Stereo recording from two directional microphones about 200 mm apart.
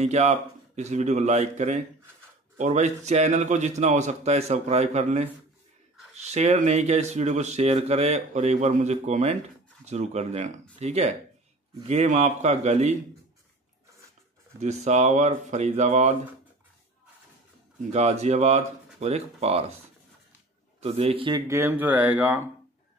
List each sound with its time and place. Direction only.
0.0 s speech: 35° right (ahead or behind)
14.6 s speech: 35° right (ahead or behind)
17.9 s speech: 35° right (ahead or behind)
20.8 s a man's voice: 30° right (ahead or behind)
21.5 s speech: 10° right (ahead or behind)